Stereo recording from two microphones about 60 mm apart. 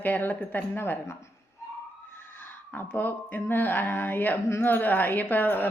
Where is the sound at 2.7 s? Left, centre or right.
Left.